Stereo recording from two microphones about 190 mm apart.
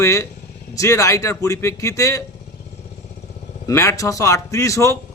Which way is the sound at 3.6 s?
15° left (ahead or behind).